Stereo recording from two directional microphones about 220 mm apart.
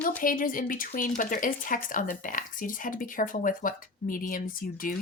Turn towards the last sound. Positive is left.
turn(degrees=40)  # may be behind; listen again after turning